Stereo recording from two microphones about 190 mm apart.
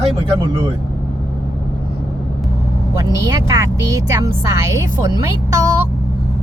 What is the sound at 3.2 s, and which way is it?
Speech, 15° right (ahead or behind).